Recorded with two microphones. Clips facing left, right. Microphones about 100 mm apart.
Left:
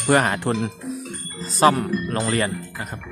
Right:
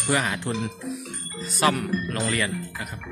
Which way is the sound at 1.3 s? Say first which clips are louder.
Left 6 dB; 35° left (ahead or behind).